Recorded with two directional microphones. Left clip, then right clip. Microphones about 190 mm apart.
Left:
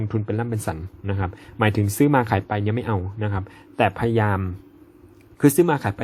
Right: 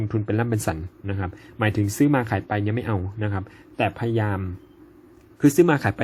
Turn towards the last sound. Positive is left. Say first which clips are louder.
# right 1 dB
turn(degrees=0)  # may be behind; listen again after turning